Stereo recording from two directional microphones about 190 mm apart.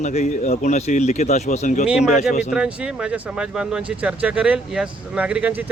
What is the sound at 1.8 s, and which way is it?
Speech, 5° right (ahead or behind).